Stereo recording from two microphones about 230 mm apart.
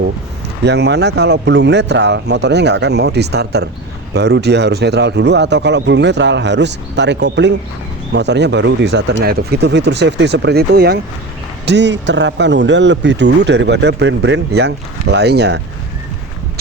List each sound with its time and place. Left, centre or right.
0.6 s speech: right